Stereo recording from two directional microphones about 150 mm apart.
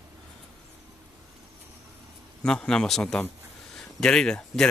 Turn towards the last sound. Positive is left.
turn(degrees=5)  # may be behind; listen again after turning